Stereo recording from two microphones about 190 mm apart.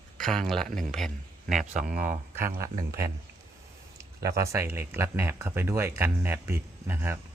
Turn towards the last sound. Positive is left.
turn(degrees=-10)  # may be behind; listen again after turning